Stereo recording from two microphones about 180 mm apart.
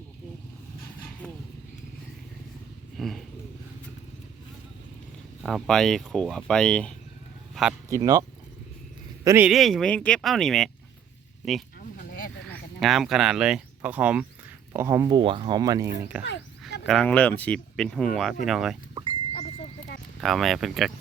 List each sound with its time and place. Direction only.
3.0 s a sound: centre (ahead or behind)
5.4 s speech: centre (ahead or behind)
7.9 s speech: 20° right (ahead or behind)
9.2 s speech: 15° right (ahead or behind)
9.5 s speech: centre (ahead or behind)
11.9 s a sound: 50° left (ahead or behind)
12.5 s speech: centre (ahead or behind); by 15.9 s 20° right (ahead or behind)
16.2 s a sound: 75° left (ahead or behind)
16.8 s speech: 5° left (ahead or behind)
20.2 s speech: centre (ahead or behind)